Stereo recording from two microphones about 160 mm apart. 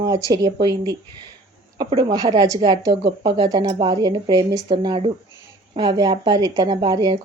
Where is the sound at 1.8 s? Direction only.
30° right (ahead or behind).